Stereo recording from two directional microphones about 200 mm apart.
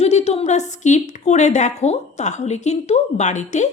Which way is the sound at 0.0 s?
35° left (ahead or behind).